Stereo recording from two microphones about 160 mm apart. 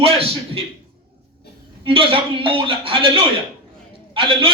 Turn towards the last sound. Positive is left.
turn(degrees=-30)  # may be behind; listen again after turning